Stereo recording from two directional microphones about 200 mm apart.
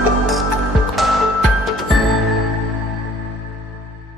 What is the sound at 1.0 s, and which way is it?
Music, centre (ahead or behind).